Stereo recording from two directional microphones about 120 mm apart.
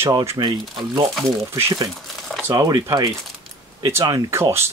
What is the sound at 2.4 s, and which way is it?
Speech, 30° right (ahead or behind).